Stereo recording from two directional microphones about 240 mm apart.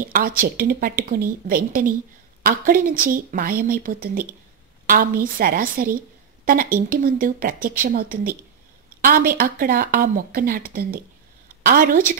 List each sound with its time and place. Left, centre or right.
0.0 s speech: right